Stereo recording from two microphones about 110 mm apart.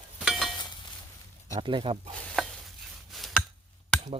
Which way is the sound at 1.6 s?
50° right (ahead or behind).